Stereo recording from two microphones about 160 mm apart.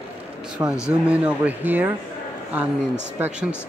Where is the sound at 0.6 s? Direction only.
20° right (ahead or behind).